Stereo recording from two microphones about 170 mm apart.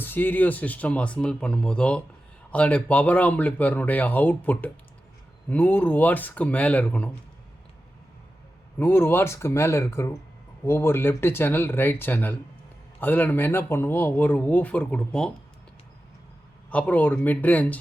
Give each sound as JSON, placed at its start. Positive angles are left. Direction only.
{"t": 0.0, "sound": "speech", "side_deg": 10}
{"t": 8.8, "sound": "speech", "side_deg": 10}
{"t": 16.6, "sound": "speech", "side_deg": 10}